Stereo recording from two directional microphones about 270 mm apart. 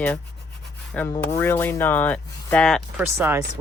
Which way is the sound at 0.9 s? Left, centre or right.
Centre.